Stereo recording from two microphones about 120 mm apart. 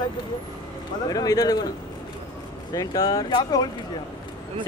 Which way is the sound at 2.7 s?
30° left (ahead or behind).